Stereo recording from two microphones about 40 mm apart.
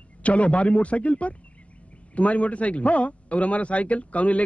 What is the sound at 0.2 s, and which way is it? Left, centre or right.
A man's voice, left.